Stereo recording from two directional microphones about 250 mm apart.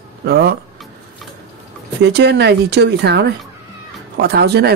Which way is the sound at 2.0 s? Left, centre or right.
Right.